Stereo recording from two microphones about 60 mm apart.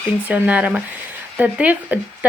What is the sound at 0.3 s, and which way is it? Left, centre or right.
Speech, right.